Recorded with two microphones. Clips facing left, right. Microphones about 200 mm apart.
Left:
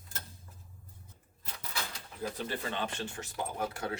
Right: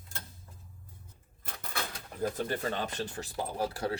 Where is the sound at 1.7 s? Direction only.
45° right (ahead or behind).